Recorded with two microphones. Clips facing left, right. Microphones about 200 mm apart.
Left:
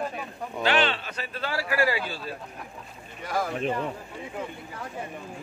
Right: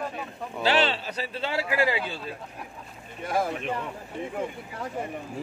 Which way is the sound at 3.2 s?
25° right (ahead or behind).